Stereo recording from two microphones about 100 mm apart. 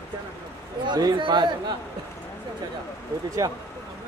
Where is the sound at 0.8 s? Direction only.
45° right (ahead or behind).